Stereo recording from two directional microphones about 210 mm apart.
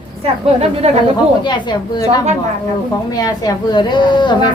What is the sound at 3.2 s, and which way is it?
Speech, 20° left (ahead or behind).